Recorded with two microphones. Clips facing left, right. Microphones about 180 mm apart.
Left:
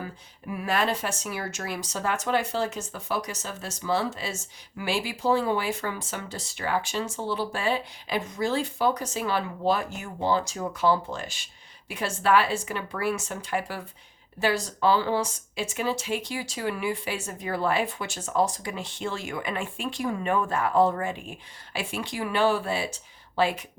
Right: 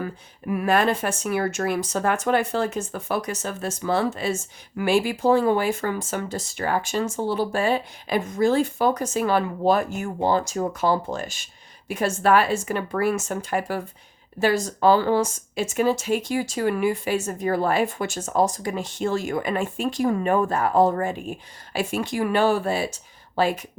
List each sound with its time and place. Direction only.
0.0 s speech: 55° right (ahead or behind)